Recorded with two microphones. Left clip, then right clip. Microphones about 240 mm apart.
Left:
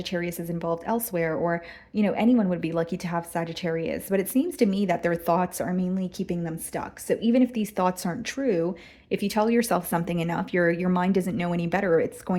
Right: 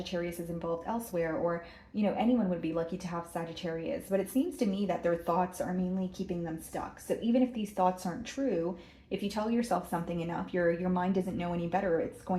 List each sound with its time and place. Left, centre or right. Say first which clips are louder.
0.0 s a woman's voice: left 5 dB; left